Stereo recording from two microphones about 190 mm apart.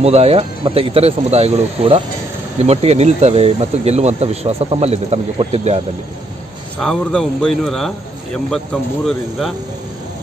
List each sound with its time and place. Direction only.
0.0 s speech: 30° right (ahead or behind)
6.8 s a man's voice: 5° left (ahead or behind)